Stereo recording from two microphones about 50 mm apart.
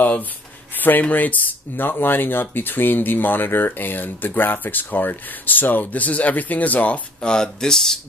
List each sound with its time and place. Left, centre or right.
0.7 s speech: left
7.2 s speech: centre